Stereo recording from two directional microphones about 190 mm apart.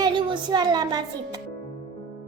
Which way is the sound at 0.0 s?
25° right (ahead or behind).